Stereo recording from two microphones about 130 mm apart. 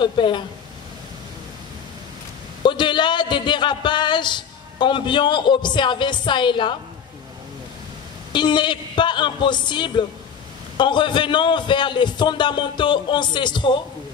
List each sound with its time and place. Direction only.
0.0 s a man's voice: 40° left (ahead or behind)
2.6 s a sound: 35° left (ahead or behind)
8.3 s a man's voice: 35° left (ahead or behind)